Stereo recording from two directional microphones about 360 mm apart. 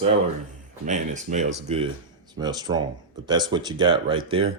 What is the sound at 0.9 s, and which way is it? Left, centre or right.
Speech, centre.